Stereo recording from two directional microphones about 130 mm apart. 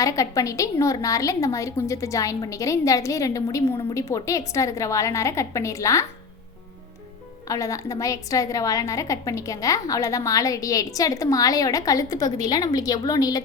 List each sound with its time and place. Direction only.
0.0 s a woman's voice: 25° left (ahead or behind)
7.4 s a woman's voice: 25° left (ahead or behind)